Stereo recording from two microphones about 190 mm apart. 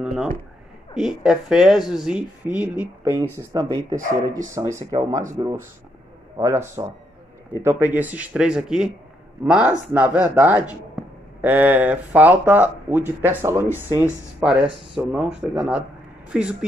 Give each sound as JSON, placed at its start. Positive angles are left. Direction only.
{"t": 0.0, "sound": "speech", "side_deg": -5}
{"t": 4.6, "sound": "speech", "side_deg": -15}